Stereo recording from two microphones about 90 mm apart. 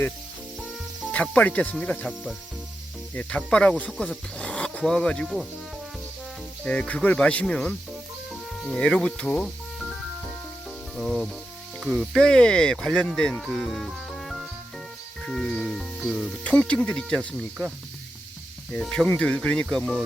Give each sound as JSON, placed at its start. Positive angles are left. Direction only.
{"t": 1.1, "sound": "speech", "side_deg": 15}
{"t": 3.2, "sound": "speech", "side_deg": 15}
{"t": 3.9, "sound": "music", "side_deg": 0}
{"t": 4.4, "sound": "speech", "side_deg": 10}
{"t": 6.7, "sound": "speech", "side_deg": 15}
{"t": 10.9, "sound": "music", "side_deg": 0}
{"t": 11.8, "sound": "speech", "side_deg": 5}
{"t": 15.3, "sound": "music", "side_deg": 5}
{"t": 16.4, "sound": "speech", "side_deg": 15}
{"t": 18.7, "sound": "speech", "side_deg": 10}